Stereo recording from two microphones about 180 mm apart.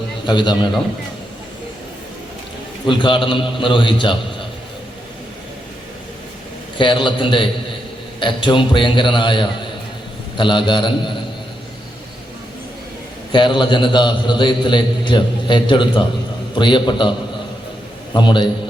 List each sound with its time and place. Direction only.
0.3 s a man's voice: 25° left (ahead or behind)
2.8 s a man's voice: 25° left (ahead or behind)
6.7 s a man's voice: 25° left (ahead or behind)
13.3 s a man's voice: 25° left (ahead or behind)